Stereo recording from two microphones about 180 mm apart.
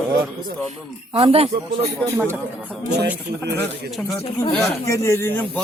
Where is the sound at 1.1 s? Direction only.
35° right (ahead or behind).